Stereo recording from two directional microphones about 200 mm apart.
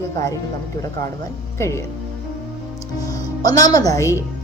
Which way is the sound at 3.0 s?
20° left (ahead or behind).